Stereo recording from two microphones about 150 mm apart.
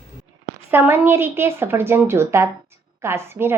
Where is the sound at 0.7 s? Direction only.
15° right (ahead or behind).